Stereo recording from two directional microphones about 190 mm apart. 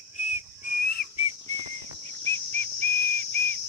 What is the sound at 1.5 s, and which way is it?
Whistle, 15° left (ahead or behind).